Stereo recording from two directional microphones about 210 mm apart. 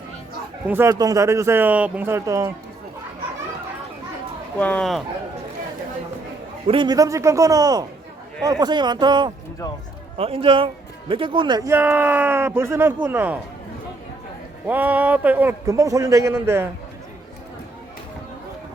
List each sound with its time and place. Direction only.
0.7 s speech: 15° right (ahead or behind)
4.5 s speech: 10° left (ahead or behind)
6.7 s speech: 20° right (ahead or behind)
14.7 s speech: 10° right (ahead or behind)